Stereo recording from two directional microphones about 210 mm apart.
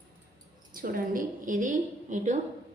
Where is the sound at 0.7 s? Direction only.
40° right (ahead or behind).